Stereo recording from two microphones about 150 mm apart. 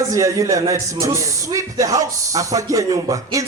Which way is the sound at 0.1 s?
20° right (ahead or behind).